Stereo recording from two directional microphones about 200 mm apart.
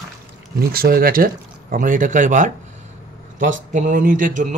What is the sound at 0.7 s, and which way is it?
Speech, 50° right (ahead or behind).